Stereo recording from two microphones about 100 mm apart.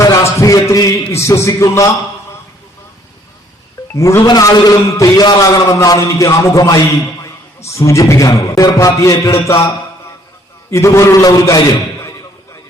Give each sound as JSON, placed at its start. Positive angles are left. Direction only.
{"t": 0.0, "sound": "a sound", "side_deg": 35}
{"t": 1.1, "sound": "a man's voice", "side_deg": 30}
{"t": 3.9, "sound": "a man's voice", "side_deg": 30}
{"t": 4.3, "sound": "a man's voice", "side_deg": 40}
{"t": 5.2, "sound": "a man's voice", "side_deg": 45}
{"t": 5.6, "sound": "a man's voice", "side_deg": 35}